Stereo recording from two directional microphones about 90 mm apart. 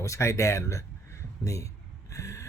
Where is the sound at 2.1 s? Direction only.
35° left (ahead or behind).